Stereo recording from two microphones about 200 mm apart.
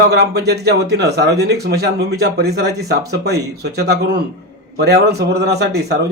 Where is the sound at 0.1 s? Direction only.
55° right (ahead or behind).